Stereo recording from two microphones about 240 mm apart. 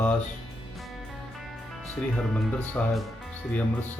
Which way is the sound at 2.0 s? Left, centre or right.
Centre.